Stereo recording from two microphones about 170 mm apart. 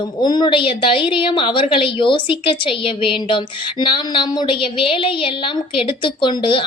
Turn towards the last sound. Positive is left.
turn(degrees=30)  # may be behind; listen again after turning